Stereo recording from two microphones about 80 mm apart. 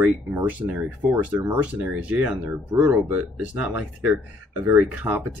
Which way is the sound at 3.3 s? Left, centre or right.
Centre.